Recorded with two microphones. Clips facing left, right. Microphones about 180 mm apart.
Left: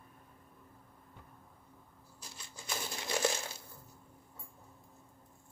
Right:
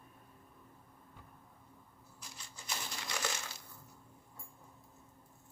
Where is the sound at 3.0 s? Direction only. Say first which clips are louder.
Left 9 dB; 25° left (ahead or behind).